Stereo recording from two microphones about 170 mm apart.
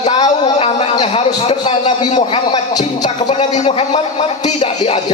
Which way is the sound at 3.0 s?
40° left (ahead or behind).